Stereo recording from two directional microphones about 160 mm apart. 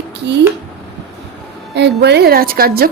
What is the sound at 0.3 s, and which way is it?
Speech, 90° right.